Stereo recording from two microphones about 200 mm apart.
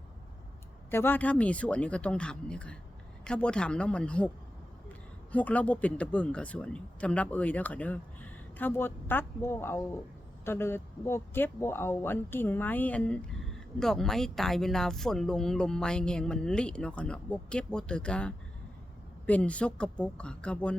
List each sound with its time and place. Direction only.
0.9 s speech: 10° left (ahead or behind)
5.3 s speech: 5° left (ahead or behind)